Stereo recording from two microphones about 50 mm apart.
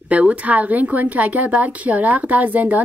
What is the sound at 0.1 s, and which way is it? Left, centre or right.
A woman's voice, right.